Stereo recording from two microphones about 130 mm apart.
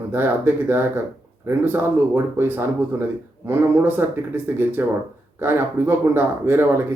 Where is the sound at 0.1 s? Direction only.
15° right (ahead or behind).